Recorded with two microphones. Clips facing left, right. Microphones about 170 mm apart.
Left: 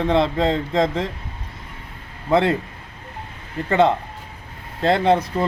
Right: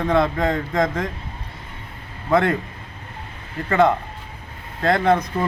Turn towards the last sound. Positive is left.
turn(degrees=25)  # may be behind; listen again after turning